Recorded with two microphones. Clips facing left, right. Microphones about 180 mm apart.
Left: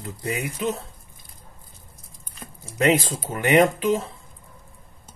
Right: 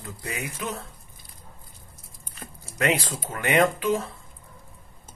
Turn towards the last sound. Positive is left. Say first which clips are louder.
# left 4 dB
turn(degrees=20)  # may be behind; listen again after turning